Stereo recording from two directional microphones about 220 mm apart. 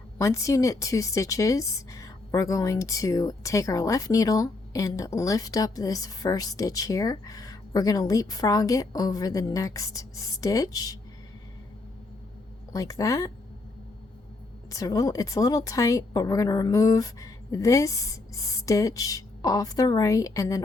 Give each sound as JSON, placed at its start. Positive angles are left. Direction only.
{"t": 0.2, "sound": "speech", "side_deg": 15}
{"t": 12.7, "sound": "speech", "side_deg": 15}
{"t": 14.7, "sound": "speech", "side_deg": 15}